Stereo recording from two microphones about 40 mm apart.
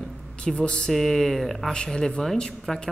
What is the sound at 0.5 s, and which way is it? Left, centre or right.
Speech, left.